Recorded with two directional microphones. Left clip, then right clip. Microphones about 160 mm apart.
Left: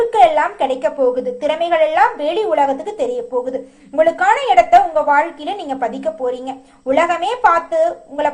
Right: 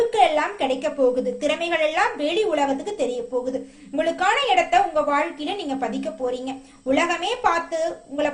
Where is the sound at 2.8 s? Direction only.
Centre (ahead or behind).